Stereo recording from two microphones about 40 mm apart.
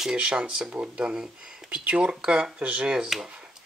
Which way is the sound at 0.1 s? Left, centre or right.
Right.